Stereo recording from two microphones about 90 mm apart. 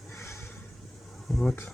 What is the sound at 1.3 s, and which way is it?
Speech, 5° left (ahead or behind).